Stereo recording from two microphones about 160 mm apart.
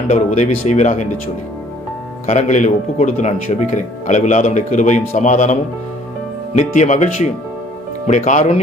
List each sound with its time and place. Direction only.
0.1 s speech: 50° left (ahead or behind)
2.2 s speech: 50° left (ahead or behind)